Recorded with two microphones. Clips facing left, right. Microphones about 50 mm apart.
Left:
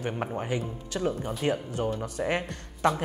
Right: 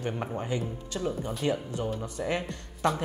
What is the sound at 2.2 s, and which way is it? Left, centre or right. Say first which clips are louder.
Speech: left 2 dB; left.